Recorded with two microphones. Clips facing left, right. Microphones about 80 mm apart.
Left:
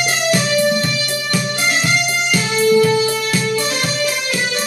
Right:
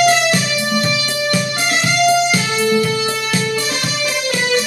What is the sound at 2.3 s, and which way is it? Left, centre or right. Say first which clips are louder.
Music: left 2 dB; right.